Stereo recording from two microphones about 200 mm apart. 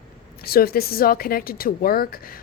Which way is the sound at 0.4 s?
50° left (ahead or behind).